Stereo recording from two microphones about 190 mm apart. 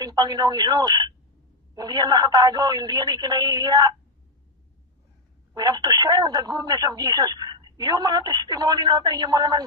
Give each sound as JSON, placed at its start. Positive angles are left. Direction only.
{"t": 0.0, "sound": "speech", "side_deg": -20}
{"t": 5.5, "sound": "speech", "side_deg": -20}